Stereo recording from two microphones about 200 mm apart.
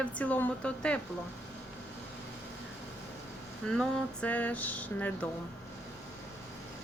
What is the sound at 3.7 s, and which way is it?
Speech, 5° left (ahead or behind).